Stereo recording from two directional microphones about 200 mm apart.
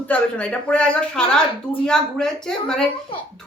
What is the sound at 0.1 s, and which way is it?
Speech, 5° left (ahead or behind).